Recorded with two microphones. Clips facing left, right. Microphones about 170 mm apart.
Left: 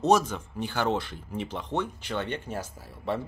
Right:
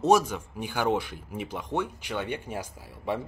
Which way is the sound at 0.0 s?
10° right (ahead or behind).